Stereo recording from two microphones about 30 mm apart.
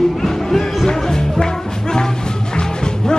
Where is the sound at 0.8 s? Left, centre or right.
Left.